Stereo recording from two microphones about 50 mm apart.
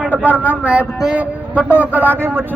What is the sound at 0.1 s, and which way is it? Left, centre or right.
A man's voice, right.